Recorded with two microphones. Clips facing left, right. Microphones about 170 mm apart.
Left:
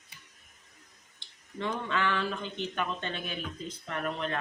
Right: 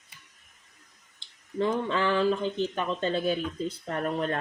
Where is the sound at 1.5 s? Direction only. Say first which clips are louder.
Right 6 dB; 30° right (ahead or behind).